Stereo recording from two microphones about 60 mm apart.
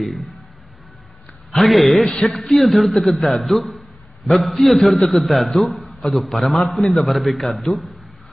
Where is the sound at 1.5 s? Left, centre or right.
Centre.